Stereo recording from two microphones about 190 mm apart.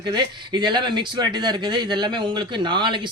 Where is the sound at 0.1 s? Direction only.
25° right (ahead or behind).